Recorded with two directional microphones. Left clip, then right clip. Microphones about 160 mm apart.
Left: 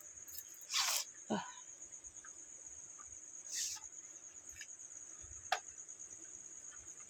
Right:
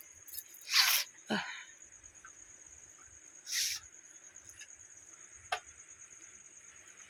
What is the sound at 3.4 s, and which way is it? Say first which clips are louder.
Insect: right 8 dB; 15° right (ahead or behind).